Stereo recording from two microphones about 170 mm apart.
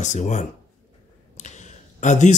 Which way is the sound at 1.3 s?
45° left (ahead or behind).